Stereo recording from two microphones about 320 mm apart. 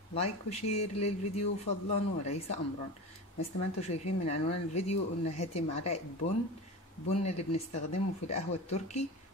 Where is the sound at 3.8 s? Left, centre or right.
Centre.